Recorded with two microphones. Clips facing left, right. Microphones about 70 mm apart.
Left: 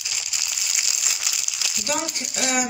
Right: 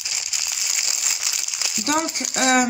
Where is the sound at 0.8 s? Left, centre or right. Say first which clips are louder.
Even; right.